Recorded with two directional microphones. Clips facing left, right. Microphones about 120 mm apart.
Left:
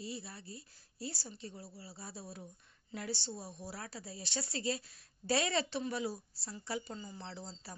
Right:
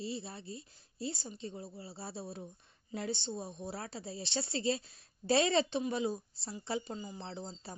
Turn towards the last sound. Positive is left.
turn(degrees=-25)  # may be behind; listen again after turning